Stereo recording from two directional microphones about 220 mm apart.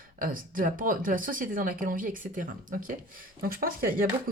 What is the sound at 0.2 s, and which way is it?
Speech, 40° right (ahead or behind).